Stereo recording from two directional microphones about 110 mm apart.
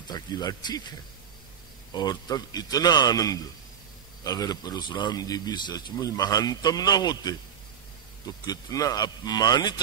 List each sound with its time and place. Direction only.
0.1 s a man's voice: 40° left (ahead or behind)
2.0 s a man's voice: 35° left (ahead or behind)